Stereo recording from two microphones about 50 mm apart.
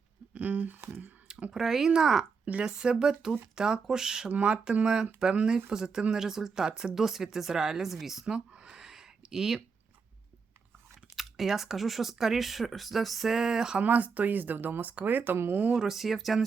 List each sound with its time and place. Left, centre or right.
0.3 s speech: right
1.5 s speech: centre
2.4 s speech: right
2.6 s speech: centre
4.3 s speech: right; by 8.4 s centre
8.7 s a sound: centre
11.2 s speech: centre
13.3 s speech: centre
13.7 s speech: right
15.7 s speech: centre